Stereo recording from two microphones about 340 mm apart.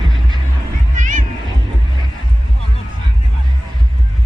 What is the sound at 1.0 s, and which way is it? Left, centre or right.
Music, right.